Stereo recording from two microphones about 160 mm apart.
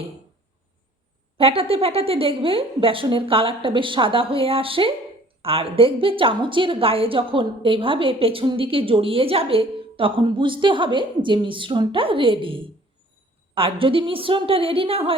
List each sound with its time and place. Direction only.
1.4 s a woman's voice: 35° right (ahead or behind)